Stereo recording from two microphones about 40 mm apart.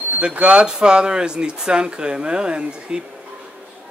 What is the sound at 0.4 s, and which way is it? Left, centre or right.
Speech, right.